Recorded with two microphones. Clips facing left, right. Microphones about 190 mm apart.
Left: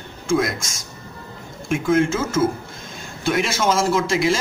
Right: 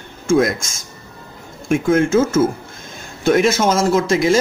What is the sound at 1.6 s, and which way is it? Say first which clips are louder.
Speech: right 3 dB; 50° right (ahead or behind).